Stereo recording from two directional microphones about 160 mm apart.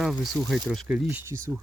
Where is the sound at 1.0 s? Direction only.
15° right (ahead or behind).